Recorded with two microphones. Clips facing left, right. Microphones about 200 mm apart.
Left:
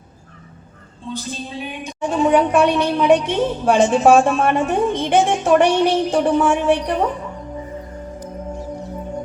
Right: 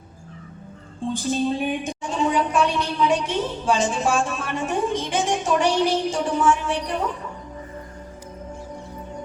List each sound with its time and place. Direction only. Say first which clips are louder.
1.1 s music: right 6 dB; 50° right (ahead or behind)
2.0 s a woman's voice: left 9 dB; 60° left (ahead or behind)